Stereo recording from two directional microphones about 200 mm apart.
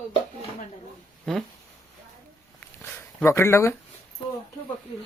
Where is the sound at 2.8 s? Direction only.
15° left (ahead or behind).